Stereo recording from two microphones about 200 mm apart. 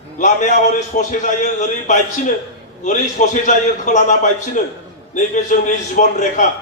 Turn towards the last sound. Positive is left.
turn(degrees=40)  # may be behind; listen again after turning